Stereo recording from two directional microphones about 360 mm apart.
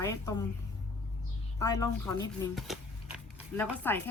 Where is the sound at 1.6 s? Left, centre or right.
Centre.